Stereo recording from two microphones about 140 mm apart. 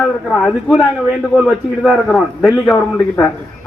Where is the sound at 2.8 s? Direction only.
20° left (ahead or behind).